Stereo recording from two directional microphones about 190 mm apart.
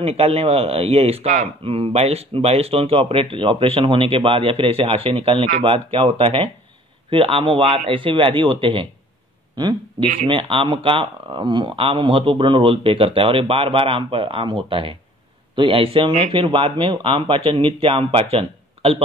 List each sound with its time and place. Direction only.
0.0 s speech: 30° right (ahead or behind)